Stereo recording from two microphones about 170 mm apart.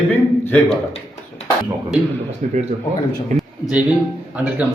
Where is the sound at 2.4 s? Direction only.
45° right (ahead or behind).